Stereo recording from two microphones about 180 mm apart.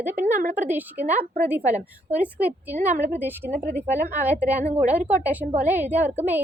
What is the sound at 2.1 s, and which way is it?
Speech, 10° right (ahead or behind).